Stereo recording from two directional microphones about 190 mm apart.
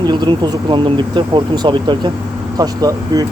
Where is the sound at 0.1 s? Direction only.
25° right (ahead or behind).